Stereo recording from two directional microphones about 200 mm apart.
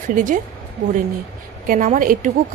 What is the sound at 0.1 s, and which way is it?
Speech, 40° right (ahead or behind).